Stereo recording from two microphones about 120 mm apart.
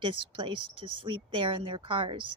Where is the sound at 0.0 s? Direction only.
45° right (ahead or behind).